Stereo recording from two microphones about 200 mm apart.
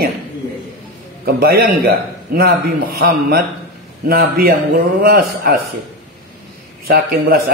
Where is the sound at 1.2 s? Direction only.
50° right (ahead or behind).